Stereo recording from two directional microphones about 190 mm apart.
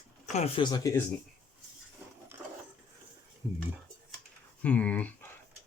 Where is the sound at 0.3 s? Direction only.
30° left (ahead or behind).